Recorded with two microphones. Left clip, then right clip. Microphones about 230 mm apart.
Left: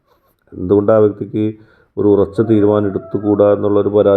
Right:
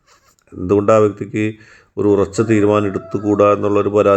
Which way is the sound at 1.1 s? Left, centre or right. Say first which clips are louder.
Left 2 dB; centre.